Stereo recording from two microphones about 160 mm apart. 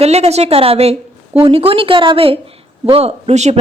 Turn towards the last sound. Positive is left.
turn(degrees=-45)  # may be behind; listen again after turning